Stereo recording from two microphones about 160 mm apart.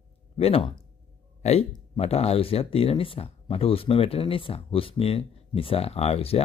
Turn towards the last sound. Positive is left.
turn(degrees=40)  # may be behind; listen again after turning